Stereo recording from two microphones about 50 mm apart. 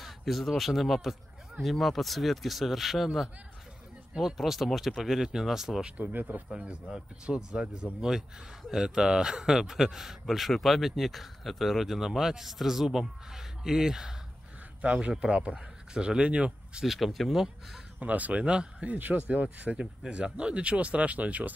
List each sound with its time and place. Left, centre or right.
0.0 s speech: centre
4.4 s speech: centre
5.9 s speech: right
6.5 s speech: centre
14.8 s speech: right
16.8 s speech: centre
17.9 s speech: right